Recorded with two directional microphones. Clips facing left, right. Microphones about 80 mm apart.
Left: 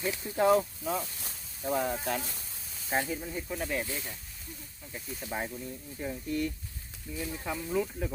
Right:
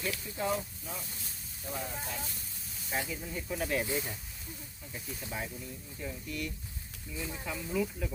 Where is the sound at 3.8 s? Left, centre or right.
Centre.